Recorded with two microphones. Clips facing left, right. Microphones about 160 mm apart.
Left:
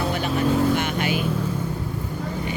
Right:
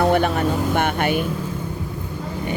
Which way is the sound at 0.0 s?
55° right (ahead or behind).